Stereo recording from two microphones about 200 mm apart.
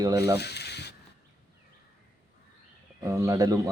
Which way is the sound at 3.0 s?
15° right (ahead or behind).